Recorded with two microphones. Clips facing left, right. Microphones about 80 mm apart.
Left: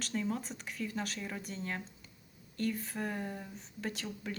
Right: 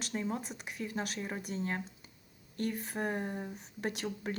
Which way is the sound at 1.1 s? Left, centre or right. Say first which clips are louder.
Right 2 dB; right.